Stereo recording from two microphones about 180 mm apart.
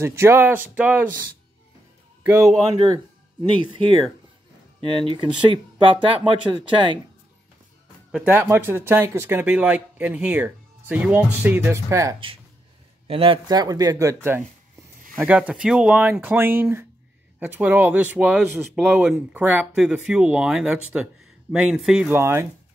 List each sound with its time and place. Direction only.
0.0 s speech: 15° right (ahead or behind)
2.7 s speech: 25° right (ahead or behind)
4.8 s speech: 30° right (ahead or behind)
8.1 s speech: 10° right (ahead or behind)
13.0 s speech: 30° right (ahead or behind); by 22.5 s 15° right (ahead or behind)